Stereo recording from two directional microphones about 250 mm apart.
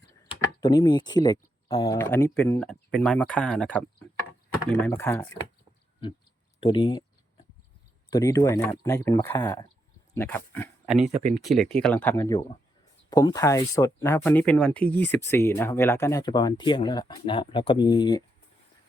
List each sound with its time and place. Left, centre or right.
0.6 s speech: centre
6.6 s speech: centre
8.1 s speech: centre